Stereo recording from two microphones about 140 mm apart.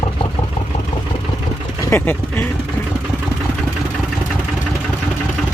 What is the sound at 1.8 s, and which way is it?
Speech, 20° left (ahead or behind).